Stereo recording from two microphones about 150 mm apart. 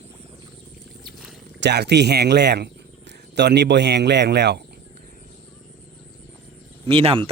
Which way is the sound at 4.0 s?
90° right.